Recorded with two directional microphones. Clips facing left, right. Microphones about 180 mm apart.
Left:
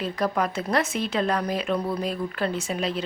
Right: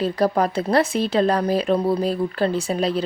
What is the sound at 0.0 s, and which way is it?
Speech, 35° right (ahead or behind).